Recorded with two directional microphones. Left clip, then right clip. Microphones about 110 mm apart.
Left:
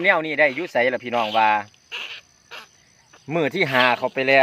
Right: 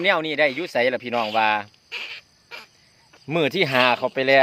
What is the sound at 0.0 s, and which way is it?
Speech, 10° right (ahead or behind).